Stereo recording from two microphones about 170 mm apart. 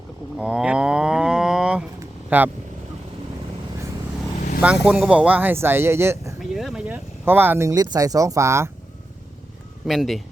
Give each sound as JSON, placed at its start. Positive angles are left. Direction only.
{"t": 0.3, "sound": "cattle", "side_deg": -5}
{"t": 2.3, "sound": "speech", "side_deg": -10}
{"t": 4.6, "sound": "speech", "side_deg": -5}
{"t": 6.4, "sound": "speech", "side_deg": 0}
{"t": 9.8, "sound": "speech", "side_deg": 0}